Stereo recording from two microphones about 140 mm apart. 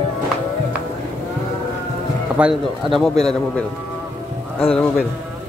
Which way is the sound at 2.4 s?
10° right (ahead or behind).